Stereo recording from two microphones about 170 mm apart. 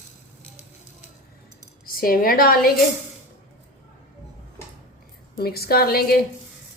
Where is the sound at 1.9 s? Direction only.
60° left (ahead or behind).